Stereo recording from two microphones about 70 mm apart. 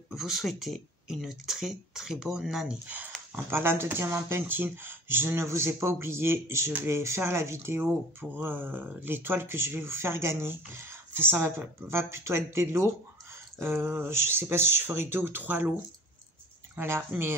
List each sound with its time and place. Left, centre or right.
0.1 s speech: centre
3.4 s speech: right
7.8 s speech: right
16.7 s speech: right